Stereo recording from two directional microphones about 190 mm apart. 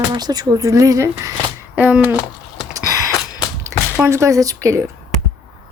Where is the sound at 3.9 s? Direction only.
10° right (ahead or behind).